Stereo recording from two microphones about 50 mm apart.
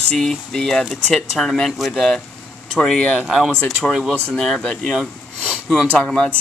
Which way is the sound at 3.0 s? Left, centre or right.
Left.